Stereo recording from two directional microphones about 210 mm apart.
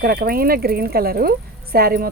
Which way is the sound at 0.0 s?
45° right (ahead or behind).